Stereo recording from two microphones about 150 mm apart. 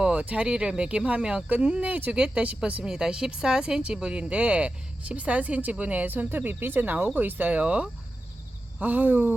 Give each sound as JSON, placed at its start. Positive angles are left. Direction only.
{"t": 0.0, "sound": "speech", "side_deg": -5}